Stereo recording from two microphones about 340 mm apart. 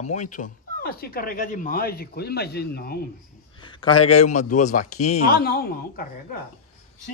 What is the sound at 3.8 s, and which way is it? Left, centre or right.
Speech, centre.